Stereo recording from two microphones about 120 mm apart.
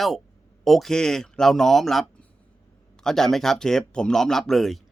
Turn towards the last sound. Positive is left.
turn(degrees=0)  # may be behind; listen again after turning